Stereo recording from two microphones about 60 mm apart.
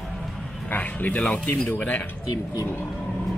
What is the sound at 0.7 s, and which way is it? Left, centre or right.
Speech, left.